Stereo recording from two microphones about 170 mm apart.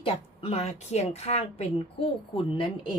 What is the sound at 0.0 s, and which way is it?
A woman's voice, 35° left (ahead or behind).